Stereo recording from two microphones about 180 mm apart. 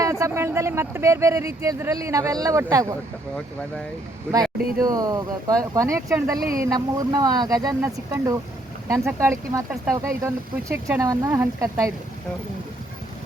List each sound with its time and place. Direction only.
0.0 s speech: 15° right (ahead or behind)
4.8 s speech: 20° right (ahead or behind)